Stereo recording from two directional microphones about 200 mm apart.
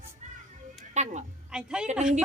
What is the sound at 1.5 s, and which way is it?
Speech, 5° right (ahead or behind).